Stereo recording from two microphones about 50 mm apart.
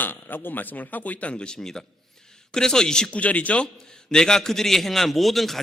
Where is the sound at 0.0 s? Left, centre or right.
Left; by 3.1 s centre.